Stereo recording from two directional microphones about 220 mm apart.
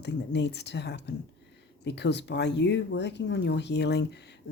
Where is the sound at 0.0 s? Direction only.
50° left (ahead or behind).